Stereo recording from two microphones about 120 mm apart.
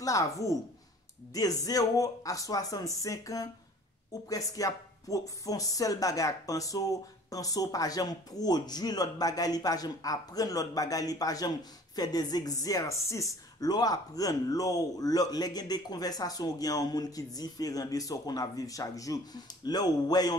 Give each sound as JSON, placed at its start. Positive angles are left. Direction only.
{"t": 0.0, "sound": "speech", "side_deg": 25}